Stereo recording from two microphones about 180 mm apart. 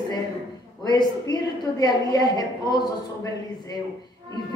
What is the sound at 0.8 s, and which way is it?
A woman's voice, 25° left (ahead or behind).